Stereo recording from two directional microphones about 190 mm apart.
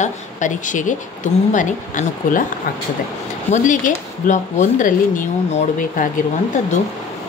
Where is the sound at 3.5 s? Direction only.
45° left (ahead or behind).